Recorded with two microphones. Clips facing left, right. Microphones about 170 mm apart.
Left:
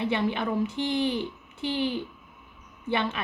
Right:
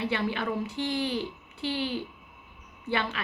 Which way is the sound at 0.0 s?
20° left (ahead or behind).